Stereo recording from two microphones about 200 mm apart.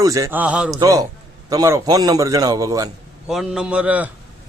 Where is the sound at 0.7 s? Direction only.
15° right (ahead or behind).